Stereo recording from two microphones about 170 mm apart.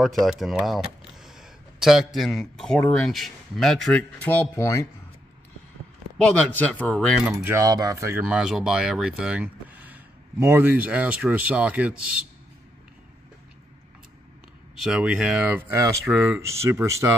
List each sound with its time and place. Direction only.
0.2 s a sound: centre (ahead or behind)
2.1 s speech: centre (ahead or behind)
6.2 s speech: 5° left (ahead or behind)
7.2 s speech: 10° right (ahead or behind)
7.6 s cutlery: 20° right (ahead or behind)
8.3 s speech: 5° right (ahead or behind)
14.8 s speech: 5° right (ahead or behind)